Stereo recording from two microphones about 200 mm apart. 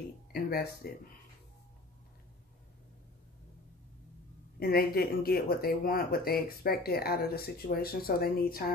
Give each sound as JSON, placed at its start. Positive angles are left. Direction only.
{"t": 0.3, "sound": "speech", "side_deg": 50}
{"t": 4.6, "sound": "speech", "side_deg": 50}